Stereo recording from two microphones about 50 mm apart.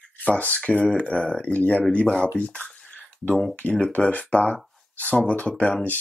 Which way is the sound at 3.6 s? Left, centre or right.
Left.